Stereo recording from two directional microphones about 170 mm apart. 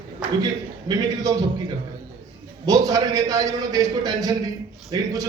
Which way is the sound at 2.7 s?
20° right (ahead or behind).